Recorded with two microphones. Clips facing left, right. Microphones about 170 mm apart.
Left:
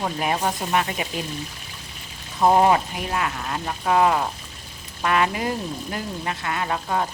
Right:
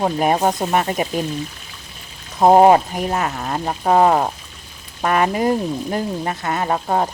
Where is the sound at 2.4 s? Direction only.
40° right (ahead or behind).